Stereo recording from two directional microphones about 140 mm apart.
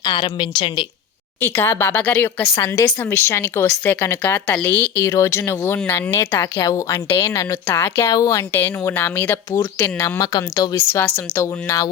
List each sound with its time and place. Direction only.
0.0 s a woman's voice: 35° left (ahead or behind)
1.4 s speech: 15° left (ahead or behind)